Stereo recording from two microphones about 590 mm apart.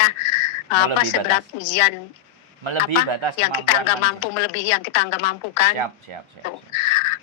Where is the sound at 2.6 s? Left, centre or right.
Right.